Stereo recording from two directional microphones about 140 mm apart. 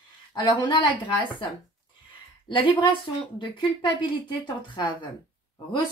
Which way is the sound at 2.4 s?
35° left (ahead or behind).